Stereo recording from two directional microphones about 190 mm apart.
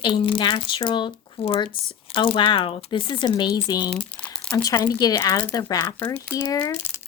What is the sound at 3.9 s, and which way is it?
Crumpling, 5° left (ahead or behind).